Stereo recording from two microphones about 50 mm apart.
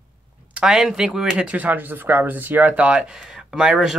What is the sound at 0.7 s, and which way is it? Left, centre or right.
Speech, centre.